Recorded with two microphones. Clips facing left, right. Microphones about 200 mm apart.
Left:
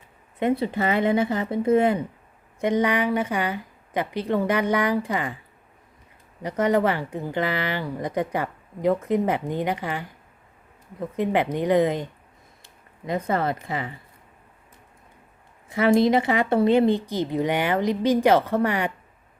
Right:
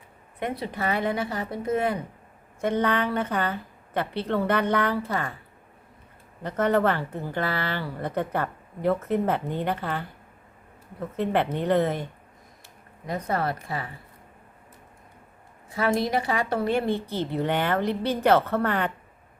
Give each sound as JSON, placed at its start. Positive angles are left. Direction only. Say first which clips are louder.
{"t": 0.3, "sound": "speech", "louder": "left 7 dB", "side_deg": 25}
{"t": 2.6, "sound": "speech", "louder": "left 3 dB", "side_deg": 15}
{"t": 6.4, "sound": "speech", "louder": "left 1 dB", "side_deg": 10}
{"t": 11.2, "sound": "speech", "louder": "left 2 dB", "side_deg": 15}
{"t": 13.1, "sound": "speech", "louder": "left 3 dB", "side_deg": 25}
{"t": 16.0, "sound": "speech", "louder": "left 6 dB", "side_deg": 20}